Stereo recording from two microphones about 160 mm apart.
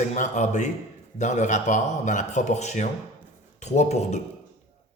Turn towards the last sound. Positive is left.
turn(degrees=45)  # may be behind; listen again after turning